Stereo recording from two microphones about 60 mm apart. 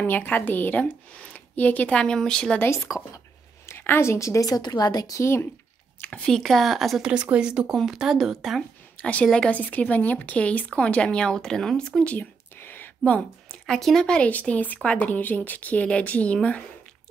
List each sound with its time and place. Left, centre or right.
0.0 s speech: left; by 2.6 s centre
2.9 s a woman's voice: left
3.6 s a woman's voice: left
5.2 s speech: left
5.9 s a sound: left
6.2 s speech: centre
7.1 s a woman's voice: centre
8.9 s speech: centre
9.6 s speech: left; by 11.9 s centre
12.2 s whispering: left
13.7 s speech: centre
14.2 s speech: left